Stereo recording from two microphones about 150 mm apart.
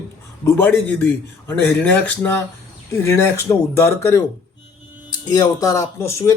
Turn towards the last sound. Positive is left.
turn(degrees=15)  # may be behind; listen again after turning